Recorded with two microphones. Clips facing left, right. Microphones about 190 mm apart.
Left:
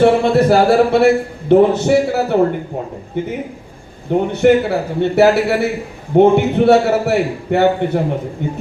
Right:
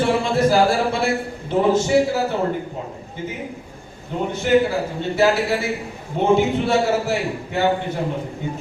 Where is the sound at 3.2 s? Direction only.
65° left (ahead or behind).